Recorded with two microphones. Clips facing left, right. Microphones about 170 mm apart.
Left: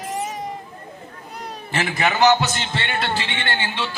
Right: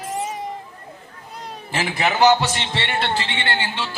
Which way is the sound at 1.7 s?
10° right (ahead or behind).